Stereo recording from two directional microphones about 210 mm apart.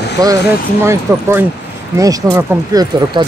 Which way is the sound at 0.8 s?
10° right (ahead or behind).